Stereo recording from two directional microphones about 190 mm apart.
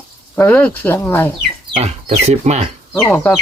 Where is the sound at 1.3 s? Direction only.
30° right (ahead or behind).